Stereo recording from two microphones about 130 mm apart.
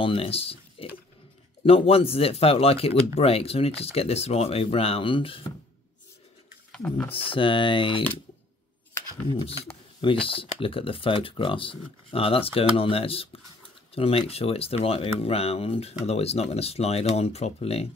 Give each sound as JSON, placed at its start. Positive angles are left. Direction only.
{"t": 0.0, "sound": "speech", "side_deg": 45}
{"t": 6.7, "sound": "speech", "side_deg": 10}
{"t": 7.2, "sound": "speech", "side_deg": 40}
{"t": 10.2, "sound": "speech", "side_deg": 45}